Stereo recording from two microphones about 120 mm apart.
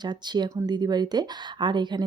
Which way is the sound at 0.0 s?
35° right (ahead or behind).